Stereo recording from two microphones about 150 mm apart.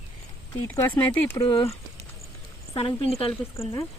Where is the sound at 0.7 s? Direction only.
15° left (ahead or behind).